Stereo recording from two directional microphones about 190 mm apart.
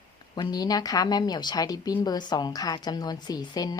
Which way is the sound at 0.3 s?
20° left (ahead or behind).